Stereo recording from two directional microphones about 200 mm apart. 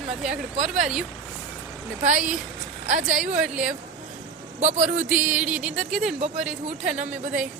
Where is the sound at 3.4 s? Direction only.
5° right (ahead or behind).